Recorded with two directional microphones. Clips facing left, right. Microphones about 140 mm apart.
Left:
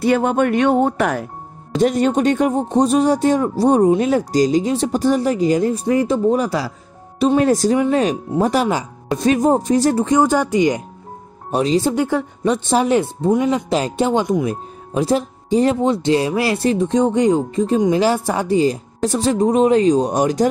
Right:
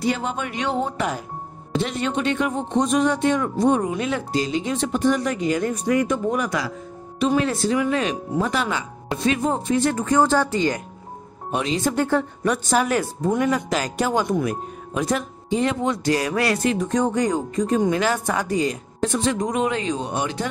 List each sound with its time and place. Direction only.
0.0 s speech: 55° left (ahead or behind)
1.8 s speech: 45° left (ahead or behind)
10.0 s speech: 15° left (ahead or behind)
11.5 s speech: 35° left (ahead or behind)
11.9 s speech: 10° left (ahead or behind)
12.5 s speech: 25° left (ahead or behind)